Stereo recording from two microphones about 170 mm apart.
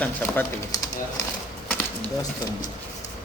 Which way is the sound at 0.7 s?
20° left (ahead or behind).